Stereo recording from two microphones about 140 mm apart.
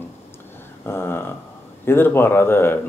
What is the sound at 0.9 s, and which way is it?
Speech, 15° left (ahead or behind).